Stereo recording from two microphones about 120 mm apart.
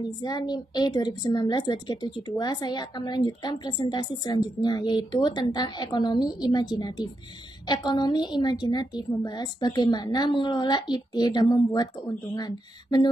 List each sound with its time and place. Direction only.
0.2 s a woman's voice: 35° left (ahead or behind)